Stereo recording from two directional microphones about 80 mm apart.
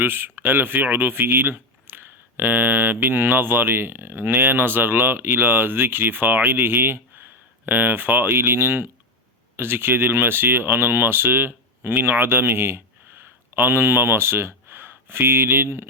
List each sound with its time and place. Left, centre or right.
0.0 s speech: right